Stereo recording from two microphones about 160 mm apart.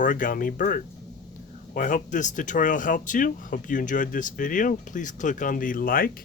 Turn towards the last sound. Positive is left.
turn(degrees=60)  # may be behind; listen again after turning